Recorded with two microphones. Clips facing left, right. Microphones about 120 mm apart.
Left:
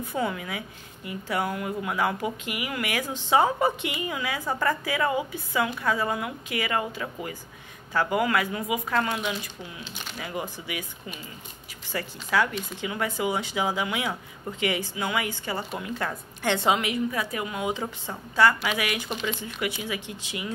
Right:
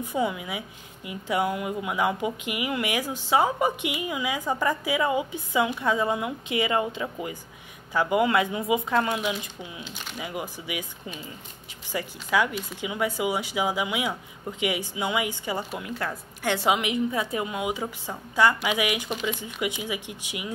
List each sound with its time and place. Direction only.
0.0 s a woman's voice: 15° right (ahead or behind)
11.9 s a woman's voice: 15° right (ahead or behind)
16.8 s a woman's voice: 20° right (ahead or behind)